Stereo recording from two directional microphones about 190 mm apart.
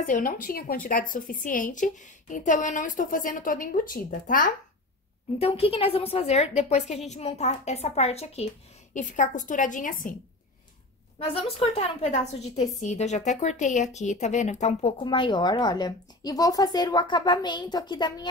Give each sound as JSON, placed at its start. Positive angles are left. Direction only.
{"t": 0.0, "sound": "speech", "side_deg": 45}
{"t": 5.4, "sound": "a woman's voice", "side_deg": 30}
{"t": 11.2, "sound": "a woman's voice", "side_deg": 30}